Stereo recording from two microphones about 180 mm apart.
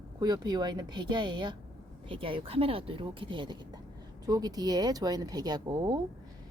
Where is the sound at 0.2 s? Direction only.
20° right (ahead or behind).